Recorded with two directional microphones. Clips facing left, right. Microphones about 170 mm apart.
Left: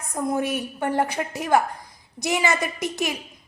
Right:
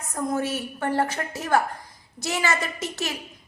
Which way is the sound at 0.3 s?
15° left (ahead or behind).